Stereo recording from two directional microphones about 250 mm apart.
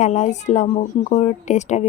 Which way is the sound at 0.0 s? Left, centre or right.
Left.